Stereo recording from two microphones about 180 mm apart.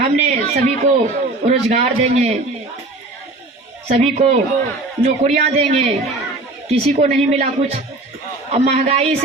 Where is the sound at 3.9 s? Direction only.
35° right (ahead or behind).